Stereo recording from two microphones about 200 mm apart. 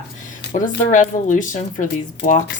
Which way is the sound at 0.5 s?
40° left (ahead or behind).